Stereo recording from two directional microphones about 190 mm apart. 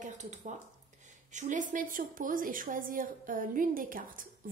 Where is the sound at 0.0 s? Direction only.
40° right (ahead or behind).